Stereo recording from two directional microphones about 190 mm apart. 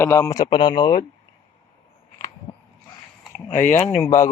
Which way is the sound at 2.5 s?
30° left (ahead or behind).